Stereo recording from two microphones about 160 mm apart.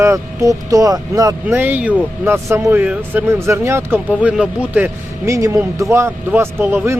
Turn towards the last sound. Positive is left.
turn(degrees=-15)  # may be behind; listen again after turning